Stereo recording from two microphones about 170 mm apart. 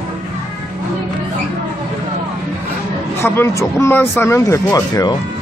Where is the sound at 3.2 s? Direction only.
15° left (ahead or behind).